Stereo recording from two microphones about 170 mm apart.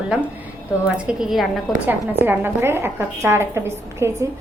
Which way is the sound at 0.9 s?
5° right (ahead or behind).